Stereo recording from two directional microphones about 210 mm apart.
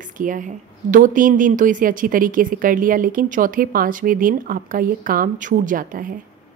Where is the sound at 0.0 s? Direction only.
40° right (ahead or behind).